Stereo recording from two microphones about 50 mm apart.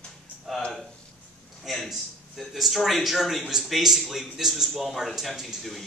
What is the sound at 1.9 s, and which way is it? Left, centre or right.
Speech, centre.